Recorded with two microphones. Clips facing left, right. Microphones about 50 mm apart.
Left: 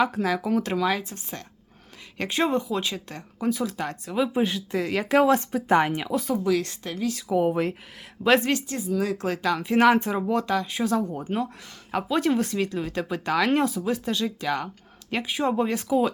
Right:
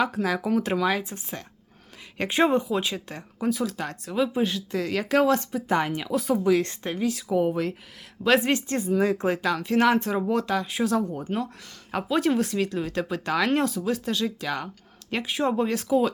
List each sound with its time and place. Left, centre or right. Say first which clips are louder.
0.0 s speech: left 1 dB; centre
4.3 s speech: left 1 dB; centre
5.5 s speech: left 4 dB; left
6.1 s speech: right 1 dB; centre
6.6 s speech: right 3 dB; right
7.0 s speech: left 1 dB; centre
7.5 s speech: left 2 dB; left
8.6 s speech: right 4 dB; right
8.9 s speech: right 3 dB; right
9.7 s speech: left 2 dB; centre
10.2 s speech: left 1 dB; centre